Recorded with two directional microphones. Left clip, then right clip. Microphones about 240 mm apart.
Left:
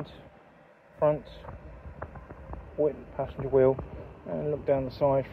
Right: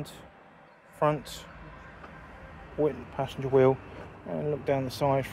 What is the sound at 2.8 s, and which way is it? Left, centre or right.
Speech, right.